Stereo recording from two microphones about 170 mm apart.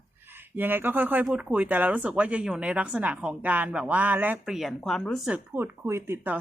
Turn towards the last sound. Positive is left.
turn(degrees=-10)  # may be behind; listen again after turning